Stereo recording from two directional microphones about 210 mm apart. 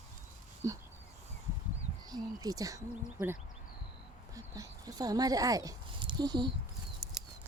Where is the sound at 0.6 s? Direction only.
15° right (ahead or behind).